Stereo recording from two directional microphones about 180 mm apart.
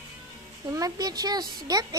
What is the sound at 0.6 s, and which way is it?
Speech, 20° right (ahead or behind).